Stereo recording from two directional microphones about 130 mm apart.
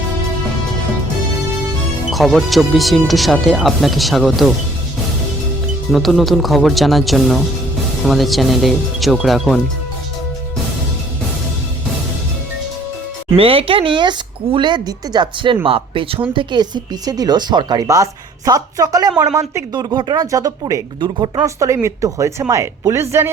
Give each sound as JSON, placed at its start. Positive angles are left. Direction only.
{"t": 2.0, "sound": "speech", "side_deg": 0}
{"t": 5.9, "sound": "speech", "side_deg": 0}
{"t": 13.3, "sound": "a woman's voice", "side_deg": -45}
{"t": 21.0, "sound": "speech", "side_deg": -40}
{"t": 21.4, "sound": "a woman's voice", "side_deg": -25}